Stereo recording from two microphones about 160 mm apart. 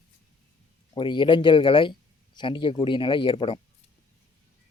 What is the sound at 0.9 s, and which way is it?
Speech, 30° left (ahead or behind).